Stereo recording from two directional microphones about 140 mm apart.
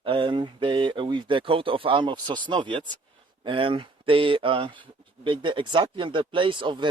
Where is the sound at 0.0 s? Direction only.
35° right (ahead or behind).